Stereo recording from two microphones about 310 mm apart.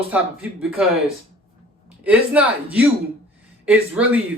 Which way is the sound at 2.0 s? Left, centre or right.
Centre.